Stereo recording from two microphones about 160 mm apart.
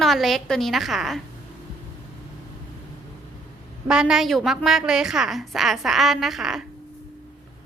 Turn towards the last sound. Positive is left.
turn(degrees=0)  # may be behind; listen again after turning